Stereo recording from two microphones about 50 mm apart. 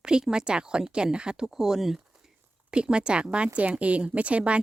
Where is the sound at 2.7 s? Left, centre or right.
Centre.